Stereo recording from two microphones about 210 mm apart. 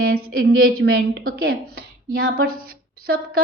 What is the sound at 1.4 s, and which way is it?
A woman's voice, 45° right (ahead or behind).